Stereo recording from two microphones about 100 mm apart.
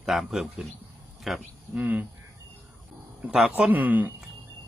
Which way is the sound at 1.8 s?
20° right (ahead or behind).